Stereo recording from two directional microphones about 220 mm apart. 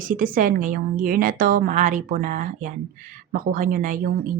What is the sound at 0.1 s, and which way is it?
Speech, 40° right (ahead or behind).